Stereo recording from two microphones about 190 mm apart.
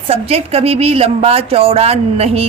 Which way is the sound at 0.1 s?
30° right (ahead or behind).